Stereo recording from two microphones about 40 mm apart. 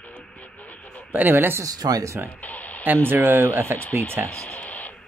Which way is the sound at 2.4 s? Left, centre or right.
Left.